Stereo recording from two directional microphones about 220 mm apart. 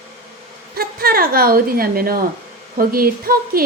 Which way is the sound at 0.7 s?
45° right (ahead or behind).